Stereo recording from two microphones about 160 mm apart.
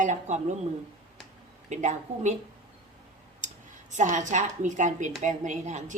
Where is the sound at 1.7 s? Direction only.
45° right (ahead or behind).